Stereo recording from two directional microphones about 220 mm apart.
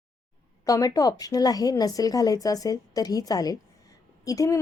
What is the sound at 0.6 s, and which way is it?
A woman's voice, 15° left (ahead or behind).